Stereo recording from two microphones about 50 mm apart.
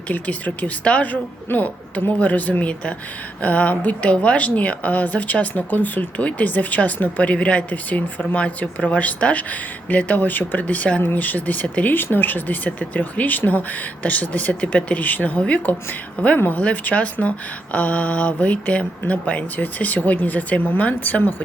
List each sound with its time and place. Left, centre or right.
0.1 s speech: left
11.0 s speech: left
12.1 s speech: left